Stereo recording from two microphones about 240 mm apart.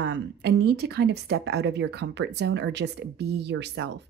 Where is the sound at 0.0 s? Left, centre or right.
Right.